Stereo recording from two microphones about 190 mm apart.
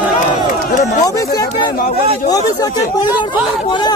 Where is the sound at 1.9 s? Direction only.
30° right (ahead or behind).